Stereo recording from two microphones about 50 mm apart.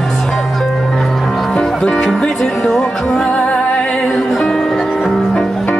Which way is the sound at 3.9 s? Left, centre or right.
Centre.